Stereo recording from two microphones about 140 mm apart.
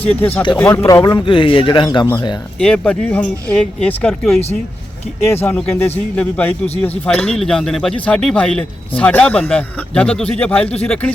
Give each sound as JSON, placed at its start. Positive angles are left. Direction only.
{"t": 0.2, "sound": "speech", "side_deg": 10}
{"t": 2.6, "sound": "speech", "side_deg": 10}